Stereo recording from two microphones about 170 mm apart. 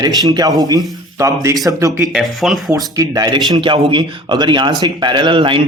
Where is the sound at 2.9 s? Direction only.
20° right (ahead or behind).